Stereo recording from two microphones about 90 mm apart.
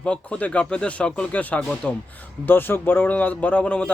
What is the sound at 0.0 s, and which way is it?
A man's voice, 15° left (ahead or behind).